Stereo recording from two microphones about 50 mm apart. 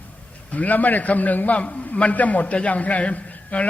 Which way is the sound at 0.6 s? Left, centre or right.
Left.